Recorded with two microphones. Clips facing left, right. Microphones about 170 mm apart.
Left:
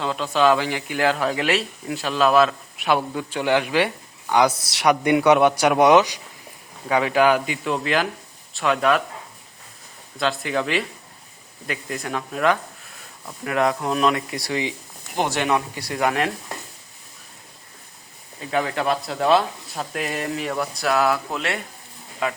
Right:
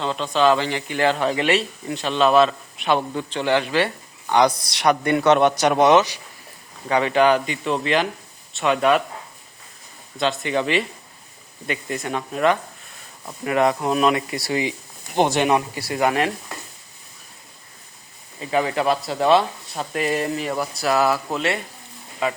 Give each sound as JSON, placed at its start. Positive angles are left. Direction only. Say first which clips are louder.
{"t": 0.0, "sound": "speech", "louder": "even", "side_deg": 5}
{"t": 10.2, "sound": "speech", "louder": "right 1 dB", "side_deg": 0}
{"t": 15.1, "sound": "speech", "louder": "right 4 dB", "side_deg": -25}
{"t": 15.7, "sound": "speech", "louder": "right 2 dB", "side_deg": -5}
{"t": 18.3, "sound": "speech", "louder": "right 2 dB", "side_deg": 0}